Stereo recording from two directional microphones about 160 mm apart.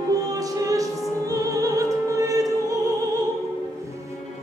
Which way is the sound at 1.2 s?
20° right (ahead or behind).